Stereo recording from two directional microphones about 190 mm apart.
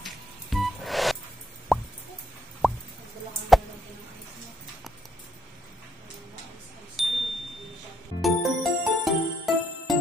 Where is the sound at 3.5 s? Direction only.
Centre (ahead or behind).